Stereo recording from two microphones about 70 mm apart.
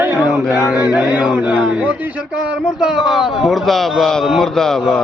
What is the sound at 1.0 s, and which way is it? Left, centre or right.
Speech, centre.